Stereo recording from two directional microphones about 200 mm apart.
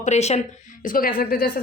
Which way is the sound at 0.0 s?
35° left (ahead or behind).